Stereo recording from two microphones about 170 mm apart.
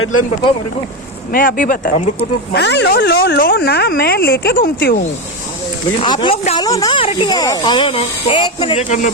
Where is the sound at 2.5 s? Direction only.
85° left; by 4.9 s 65° left (ahead or behind).